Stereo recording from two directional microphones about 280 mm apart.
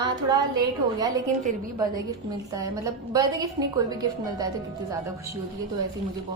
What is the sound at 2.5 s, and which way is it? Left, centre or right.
A woman's voice, centre.